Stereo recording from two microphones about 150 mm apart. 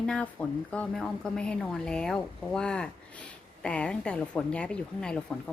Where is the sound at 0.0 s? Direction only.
5° left (ahead or behind).